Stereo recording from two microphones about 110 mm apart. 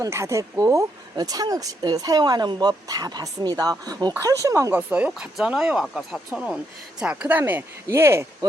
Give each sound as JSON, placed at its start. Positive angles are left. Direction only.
{"t": 0.0, "sound": "speech", "side_deg": -25}
{"t": 4.7, "sound": "speech", "side_deg": -15}